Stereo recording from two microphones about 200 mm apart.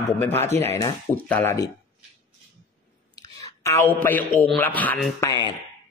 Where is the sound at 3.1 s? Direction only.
15° left (ahead or behind).